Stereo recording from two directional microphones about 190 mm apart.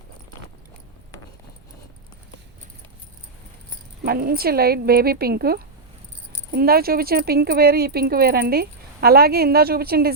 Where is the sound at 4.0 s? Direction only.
50° right (ahead or behind).